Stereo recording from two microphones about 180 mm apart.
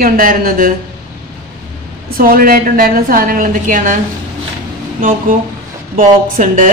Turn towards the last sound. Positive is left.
turn(degrees=-50)  # may be behind; listen again after turning